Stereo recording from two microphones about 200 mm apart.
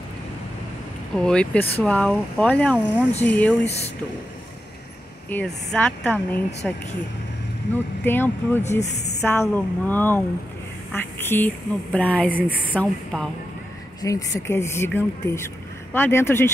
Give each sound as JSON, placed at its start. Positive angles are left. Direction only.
{"t": 1.1, "sound": "speech", "side_deg": 5}
{"t": 3.6, "sound": "speech", "side_deg": 30}
{"t": 5.3, "sound": "speech", "side_deg": 5}
{"t": 8.0, "sound": "speech", "side_deg": 10}
{"t": 14.0, "sound": "speech", "side_deg": 15}